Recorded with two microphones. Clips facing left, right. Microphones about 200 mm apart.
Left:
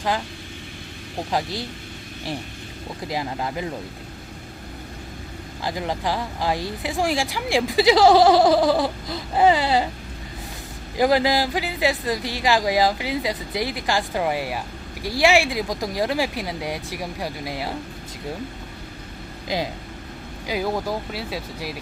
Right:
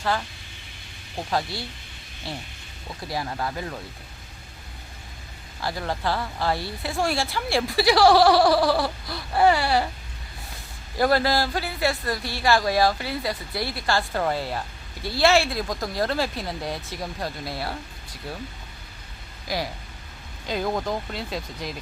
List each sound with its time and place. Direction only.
1.3 s speech: 15° left (ahead or behind)
3.1 s speech: 20° left (ahead or behind)
5.6 s speech: 15° left (ahead or behind)
10.9 s speech: 15° left (ahead or behind)
19.5 s speech: 20° left (ahead or behind)
20.5 s speech: 5° left (ahead or behind)